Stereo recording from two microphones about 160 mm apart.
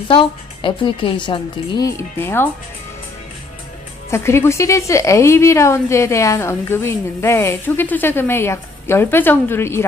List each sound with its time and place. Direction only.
0.1 s a woman's voice: 30° left (ahead or behind)
1.9 s a woman's voice: 15° left (ahead or behind)
4.1 s a woman's voice: 15° left (ahead or behind)